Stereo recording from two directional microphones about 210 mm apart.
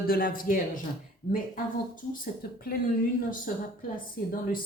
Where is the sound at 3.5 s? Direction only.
40° left (ahead or behind).